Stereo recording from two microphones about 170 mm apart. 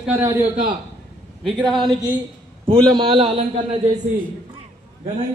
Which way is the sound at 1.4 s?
Centre (ahead or behind).